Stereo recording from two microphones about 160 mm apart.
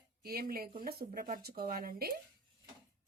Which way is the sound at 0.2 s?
70° right (ahead or behind).